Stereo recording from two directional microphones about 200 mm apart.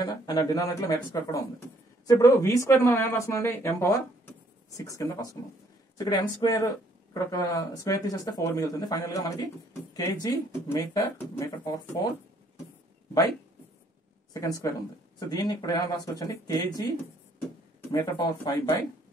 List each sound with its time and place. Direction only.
0.0 s speech: 20° left (ahead or behind)
14.3 s speech: 15° left (ahead or behind)
17.9 s speech: 20° left (ahead or behind)